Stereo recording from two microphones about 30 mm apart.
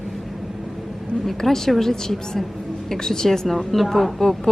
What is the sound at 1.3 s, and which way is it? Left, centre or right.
Speech, centre.